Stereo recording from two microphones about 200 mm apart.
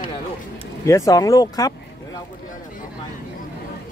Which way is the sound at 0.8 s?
15° left (ahead or behind).